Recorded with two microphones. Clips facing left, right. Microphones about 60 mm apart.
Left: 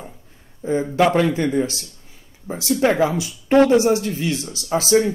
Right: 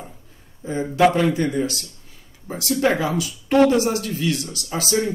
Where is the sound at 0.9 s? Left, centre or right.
Left.